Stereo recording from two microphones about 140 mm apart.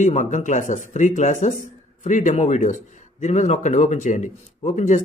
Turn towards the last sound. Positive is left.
turn(degrees=55)  # may be behind; listen again after turning